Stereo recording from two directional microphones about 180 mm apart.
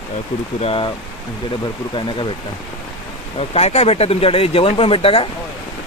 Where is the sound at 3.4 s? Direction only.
35° left (ahead or behind).